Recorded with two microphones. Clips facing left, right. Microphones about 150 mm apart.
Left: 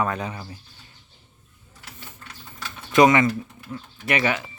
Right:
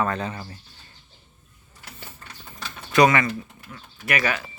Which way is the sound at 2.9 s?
20° left (ahead or behind).